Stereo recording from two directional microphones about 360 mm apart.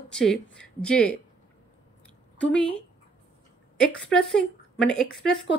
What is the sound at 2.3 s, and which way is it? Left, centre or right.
Speech, centre.